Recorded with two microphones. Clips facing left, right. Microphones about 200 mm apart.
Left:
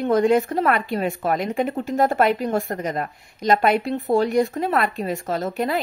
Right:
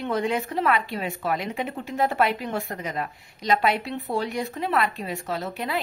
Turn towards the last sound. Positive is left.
turn(degrees=45)  # may be behind; listen again after turning